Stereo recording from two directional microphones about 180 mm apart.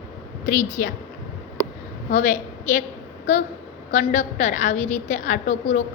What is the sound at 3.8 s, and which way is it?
A woman's voice, 40° left (ahead or behind).